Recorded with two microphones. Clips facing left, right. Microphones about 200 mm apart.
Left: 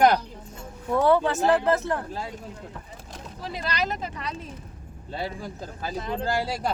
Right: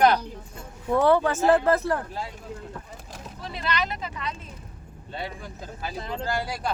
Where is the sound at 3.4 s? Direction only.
35° left (ahead or behind).